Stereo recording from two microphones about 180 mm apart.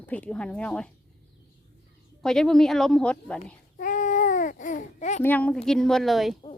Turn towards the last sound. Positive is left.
turn(degrees=0)  # may be behind; listen again after turning